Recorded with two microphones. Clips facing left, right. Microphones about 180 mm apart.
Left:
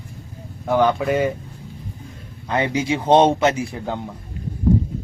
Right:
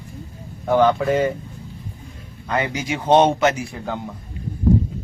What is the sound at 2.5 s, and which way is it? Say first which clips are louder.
Speech: left 3 dB; 25° left (ahead or behind).